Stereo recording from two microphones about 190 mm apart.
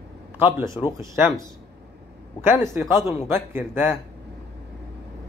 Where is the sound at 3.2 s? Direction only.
10° right (ahead or behind).